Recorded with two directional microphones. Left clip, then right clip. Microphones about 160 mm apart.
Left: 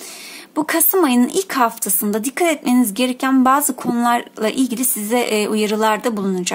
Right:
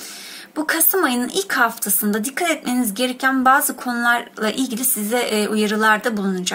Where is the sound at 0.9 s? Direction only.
40° left (ahead or behind).